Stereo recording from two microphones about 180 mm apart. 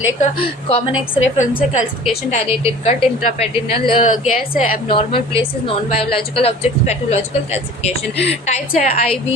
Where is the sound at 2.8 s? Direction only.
30° left (ahead or behind).